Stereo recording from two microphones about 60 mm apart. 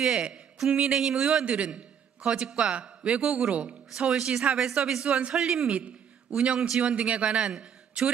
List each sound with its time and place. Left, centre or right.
0.0 s a man's voice: centre
7.2 s a man's voice: centre